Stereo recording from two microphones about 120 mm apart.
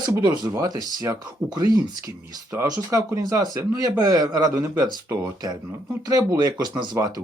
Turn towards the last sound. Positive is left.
turn(degrees=-35)  # may be behind; listen again after turning